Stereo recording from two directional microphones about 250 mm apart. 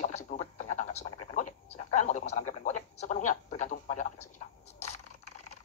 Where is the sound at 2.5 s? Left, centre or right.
Left.